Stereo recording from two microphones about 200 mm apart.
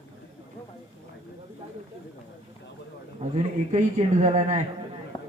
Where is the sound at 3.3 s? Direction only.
35° right (ahead or behind).